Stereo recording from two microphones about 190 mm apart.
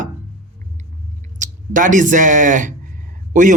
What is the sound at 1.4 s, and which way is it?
A man's voice, 45° right (ahead or behind).